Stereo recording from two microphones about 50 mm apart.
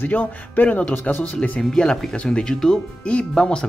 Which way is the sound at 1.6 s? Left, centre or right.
Centre.